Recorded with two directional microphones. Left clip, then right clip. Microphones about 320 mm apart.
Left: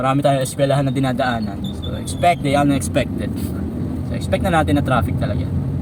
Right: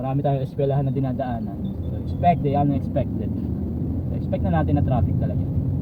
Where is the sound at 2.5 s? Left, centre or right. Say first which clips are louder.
Left 6 dB; left.